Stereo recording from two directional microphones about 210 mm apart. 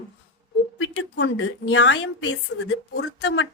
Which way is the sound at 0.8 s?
60° left (ahead or behind).